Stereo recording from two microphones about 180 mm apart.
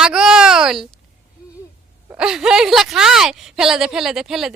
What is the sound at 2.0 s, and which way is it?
Speech, 5° right (ahead or behind).